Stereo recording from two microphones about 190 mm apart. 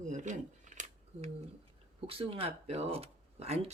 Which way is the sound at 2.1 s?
30° right (ahead or behind).